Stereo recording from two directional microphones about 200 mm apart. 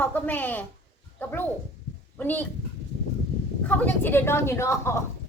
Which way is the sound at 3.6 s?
10° left (ahead or behind).